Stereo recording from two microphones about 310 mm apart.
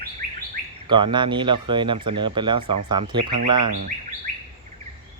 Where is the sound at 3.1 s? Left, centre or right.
Right.